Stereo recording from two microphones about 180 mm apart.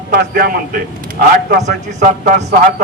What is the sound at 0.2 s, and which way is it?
Speech, 55° right (ahead or behind).